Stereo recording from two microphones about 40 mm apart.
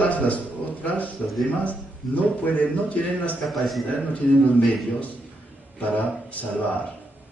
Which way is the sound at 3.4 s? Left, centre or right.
Centre.